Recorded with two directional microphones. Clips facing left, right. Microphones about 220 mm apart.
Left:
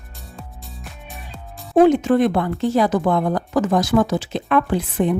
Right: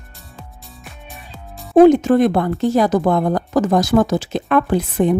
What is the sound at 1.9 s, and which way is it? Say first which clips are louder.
A woman's voice: right 3 dB; 40° right (ahead or behind).